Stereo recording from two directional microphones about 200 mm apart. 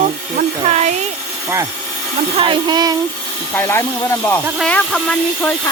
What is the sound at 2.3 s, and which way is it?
Speech, 25° right (ahead or behind).